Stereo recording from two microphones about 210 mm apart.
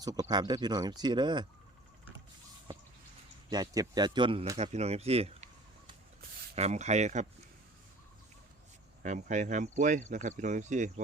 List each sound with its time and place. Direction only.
0.0 s speech: 20° right (ahead or behind)
3.5 s speech: 20° right (ahead or behind)
6.6 s speech: 30° right (ahead or behind)
9.0 s speech: 35° right (ahead or behind)